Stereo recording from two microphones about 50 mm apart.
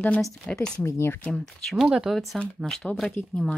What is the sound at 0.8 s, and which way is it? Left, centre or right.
Speech, left.